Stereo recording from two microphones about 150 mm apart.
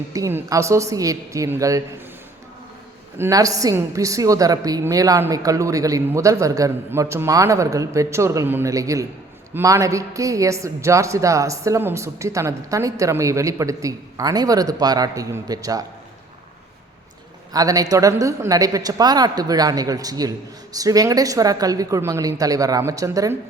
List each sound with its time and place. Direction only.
0.1 s a woman's voice: 20° right (ahead or behind)
3.2 s a woman's voice: 20° right (ahead or behind)
17.5 s a woman's voice: 25° right (ahead or behind)